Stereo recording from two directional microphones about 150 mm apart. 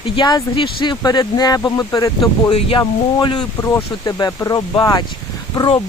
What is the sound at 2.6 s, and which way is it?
Speech, 35° left (ahead or behind).